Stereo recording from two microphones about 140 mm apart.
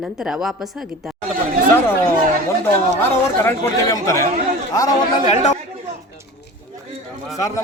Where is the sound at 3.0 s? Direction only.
20° left (ahead or behind).